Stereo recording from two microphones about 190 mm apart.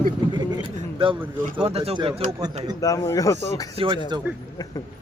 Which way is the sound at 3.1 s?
15° left (ahead or behind).